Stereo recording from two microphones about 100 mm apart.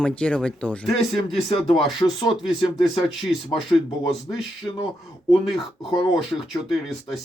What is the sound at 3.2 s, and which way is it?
Speech, centre (ahead or behind).